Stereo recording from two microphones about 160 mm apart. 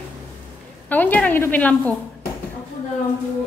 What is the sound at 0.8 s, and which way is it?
A woman's voice, 10° left (ahead or behind).